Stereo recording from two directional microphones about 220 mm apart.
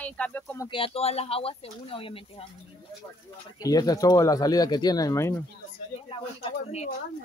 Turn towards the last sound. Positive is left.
turn(degrees=30)  # may be behind; listen again after turning